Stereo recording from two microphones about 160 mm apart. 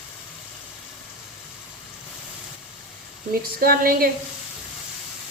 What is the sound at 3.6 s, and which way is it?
Speech, 65° right (ahead or behind).